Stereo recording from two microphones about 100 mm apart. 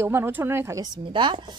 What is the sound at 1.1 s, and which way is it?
Speech, 55° right (ahead or behind).